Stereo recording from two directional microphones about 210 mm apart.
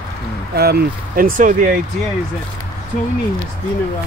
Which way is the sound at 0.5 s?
50° right (ahead or behind).